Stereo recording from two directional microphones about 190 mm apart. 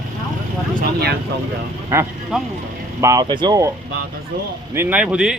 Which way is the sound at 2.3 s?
5° right (ahead or behind).